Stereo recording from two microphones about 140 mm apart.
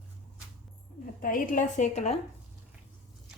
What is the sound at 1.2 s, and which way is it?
Speech, 75° left (ahead or behind).